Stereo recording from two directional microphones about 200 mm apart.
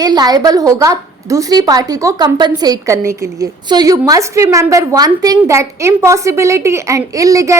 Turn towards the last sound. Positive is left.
turn(degrees=-15)  # may be behind; listen again after turning